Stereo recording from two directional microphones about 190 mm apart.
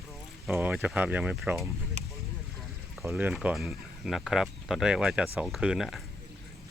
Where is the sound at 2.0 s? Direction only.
40° right (ahead or behind).